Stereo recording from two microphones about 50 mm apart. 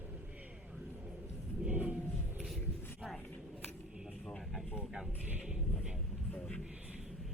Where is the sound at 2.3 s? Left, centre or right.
Centre.